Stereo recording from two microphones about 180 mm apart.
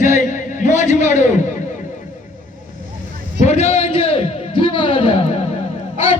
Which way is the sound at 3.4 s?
35° left (ahead or behind).